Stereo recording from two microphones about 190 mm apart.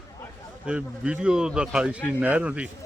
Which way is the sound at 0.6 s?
5° right (ahead or behind).